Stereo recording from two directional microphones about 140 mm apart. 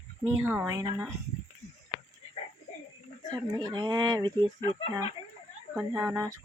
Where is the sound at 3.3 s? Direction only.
30° right (ahead or behind).